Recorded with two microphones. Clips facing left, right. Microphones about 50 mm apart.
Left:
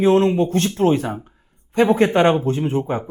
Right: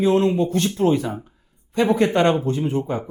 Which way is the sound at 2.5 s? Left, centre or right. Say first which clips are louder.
Left 2 dB; left.